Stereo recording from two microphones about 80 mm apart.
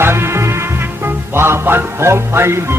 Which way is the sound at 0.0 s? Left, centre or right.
Right.